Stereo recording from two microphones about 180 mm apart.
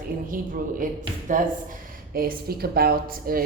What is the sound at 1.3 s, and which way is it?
Speech, 45° right (ahead or behind).